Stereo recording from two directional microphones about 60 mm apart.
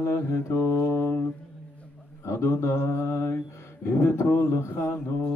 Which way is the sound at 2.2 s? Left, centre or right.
Left.